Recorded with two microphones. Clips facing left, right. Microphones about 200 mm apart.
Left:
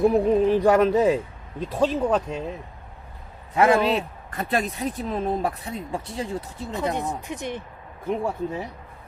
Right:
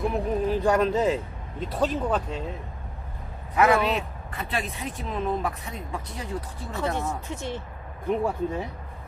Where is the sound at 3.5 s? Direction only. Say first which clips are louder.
Left 2 dB; 25° left (ahead or behind).